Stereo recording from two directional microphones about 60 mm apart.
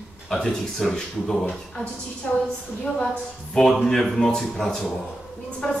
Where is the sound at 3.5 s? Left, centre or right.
Centre.